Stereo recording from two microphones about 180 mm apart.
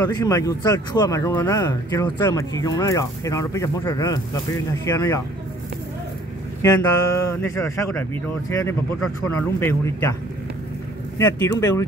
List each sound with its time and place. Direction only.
0.0 s speech: 20° left (ahead or behind)
6.6 s speech: 15° left (ahead or behind)
11.1 s speech: 20° left (ahead or behind)